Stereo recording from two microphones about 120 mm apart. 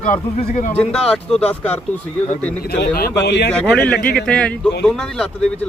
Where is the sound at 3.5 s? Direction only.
10° left (ahead or behind).